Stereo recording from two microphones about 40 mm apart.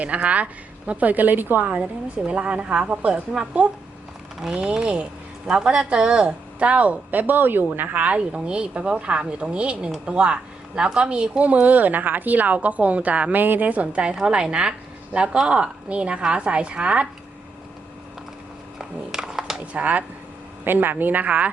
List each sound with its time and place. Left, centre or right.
0.0 s speech: right
1.6 s a woman's voice: right
4.5 s a woman's voice: right
11.6 s speech: right
13.3 s a woman's voice: right
13.8 s a woman's voice: right
18.8 s a sound: centre
19.7 s speech: right
20.7 s a woman's voice: right
21.0 s speech: right